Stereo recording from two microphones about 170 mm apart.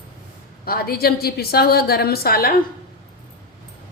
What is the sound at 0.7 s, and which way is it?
A woman's voice, 65° left (ahead or behind).